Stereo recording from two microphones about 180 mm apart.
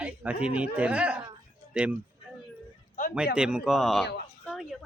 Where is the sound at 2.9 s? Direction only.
50° left (ahead or behind).